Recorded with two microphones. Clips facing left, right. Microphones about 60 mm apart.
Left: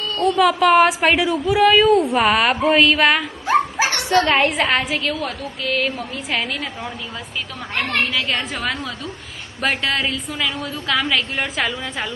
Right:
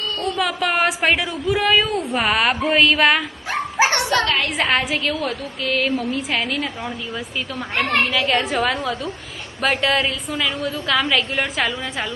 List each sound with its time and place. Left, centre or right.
0.2 s a woman's voice: centre
3.8 s a sound: right
4.1 s a woman's voice: left
4.4 s a woman's voice: centre
8.1 s a woman's voice: centre